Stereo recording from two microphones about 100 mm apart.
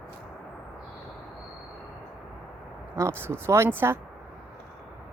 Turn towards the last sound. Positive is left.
turn(degrees=-20)  # may be behind; listen again after turning